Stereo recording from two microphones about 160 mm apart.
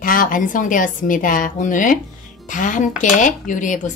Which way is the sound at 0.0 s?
55° left (ahead or behind).